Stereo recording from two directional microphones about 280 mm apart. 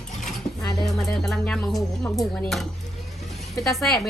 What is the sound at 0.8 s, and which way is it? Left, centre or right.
Music, centre.